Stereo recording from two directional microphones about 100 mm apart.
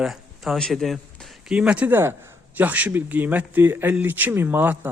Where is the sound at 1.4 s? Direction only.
10° right (ahead or behind).